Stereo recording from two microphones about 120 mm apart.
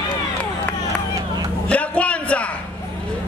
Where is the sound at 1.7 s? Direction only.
10° left (ahead or behind).